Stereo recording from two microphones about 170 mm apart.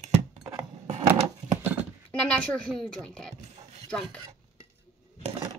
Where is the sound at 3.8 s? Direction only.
5° left (ahead or behind).